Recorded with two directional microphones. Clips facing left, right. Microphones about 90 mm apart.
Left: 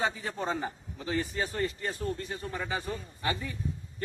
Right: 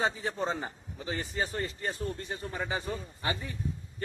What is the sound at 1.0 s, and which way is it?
A man's voice, 25° right (ahead or behind).